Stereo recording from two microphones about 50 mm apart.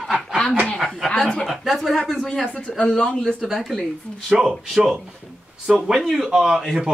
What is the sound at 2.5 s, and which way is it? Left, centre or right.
Speech, centre.